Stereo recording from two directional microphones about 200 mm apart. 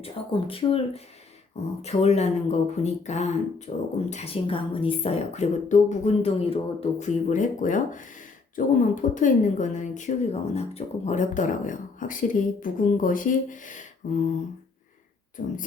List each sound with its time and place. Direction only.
0.0 s a woman's voice: 25° left (ahead or behind)
15.4 s a woman's voice: 35° left (ahead or behind)